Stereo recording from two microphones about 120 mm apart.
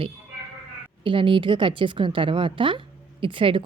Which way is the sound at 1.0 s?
45° right (ahead or behind).